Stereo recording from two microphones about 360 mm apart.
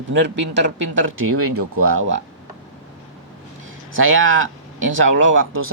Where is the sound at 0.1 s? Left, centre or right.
Right.